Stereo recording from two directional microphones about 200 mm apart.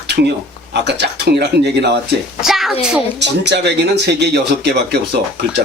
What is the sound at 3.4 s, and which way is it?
A man's voice, 55° right (ahead or behind).